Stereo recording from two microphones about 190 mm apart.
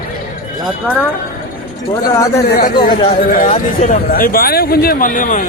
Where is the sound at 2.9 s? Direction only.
45° left (ahead or behind).